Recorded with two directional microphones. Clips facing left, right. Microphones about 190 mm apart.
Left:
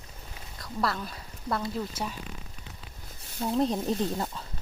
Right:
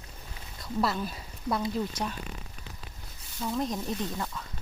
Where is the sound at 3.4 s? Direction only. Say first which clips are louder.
Left 4 dB; 30° left (ahead or behind).